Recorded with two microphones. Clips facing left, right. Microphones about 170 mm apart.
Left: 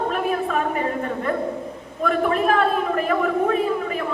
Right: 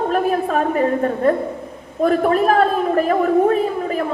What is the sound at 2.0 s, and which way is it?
A man's voice, 40° right (ahead or behind).